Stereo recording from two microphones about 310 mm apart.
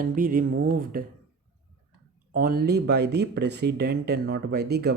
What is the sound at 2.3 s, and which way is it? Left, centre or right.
Speech, right.